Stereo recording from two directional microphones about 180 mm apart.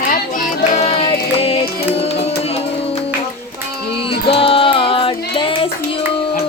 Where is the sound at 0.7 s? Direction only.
35° left (ahead or behind).